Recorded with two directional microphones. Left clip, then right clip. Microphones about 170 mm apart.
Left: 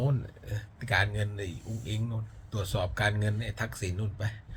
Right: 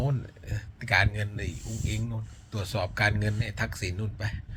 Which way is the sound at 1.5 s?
35° right (ahead or behind).